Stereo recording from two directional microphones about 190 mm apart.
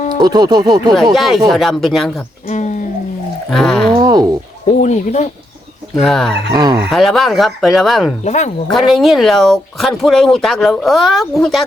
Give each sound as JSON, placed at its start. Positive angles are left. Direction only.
{"t": 0.2, "sound": "speech", "side_deg": -20}
{"t": 1.1, "sound": "speech", "side_deg": 0}
{"t": 2.5, "sound": "a sound", "side_deg": 40}
{"t": 3.5, "sound": "speech", "side_deg": 0}
{"t": 4.0, "sound": "a sound", "side_deg": -20}
{"t": 4.8, "sound": "speech", "side_deg": 40}
{"t": 6.0, "sound": "speech", "side_deg": 0}
{"t": 6.5, "sound": "speech", "side_deg": -20}
{"t": 6.9, "sound": "speech", "side_deg": 0}
{"t": 8.2, "sound": "speech", "side_deg": 40}
{"t": 8.7, "sound": "speech", "side_deg": 0}